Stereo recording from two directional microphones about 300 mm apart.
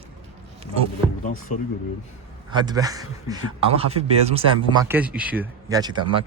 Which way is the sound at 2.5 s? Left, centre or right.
Centre.